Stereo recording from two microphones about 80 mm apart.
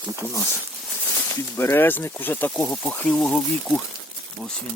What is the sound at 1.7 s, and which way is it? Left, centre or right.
Speech, left.